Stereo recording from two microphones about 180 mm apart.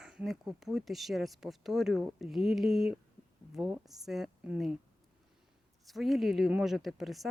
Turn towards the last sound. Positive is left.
turn(degrees=0)  # may be behind; listen again after turning